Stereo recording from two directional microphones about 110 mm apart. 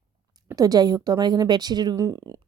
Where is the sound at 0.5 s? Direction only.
35° right (ahead or behind).